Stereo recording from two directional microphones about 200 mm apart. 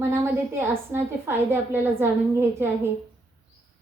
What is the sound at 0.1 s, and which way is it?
A woman's voice, 10° right (ahead or behind).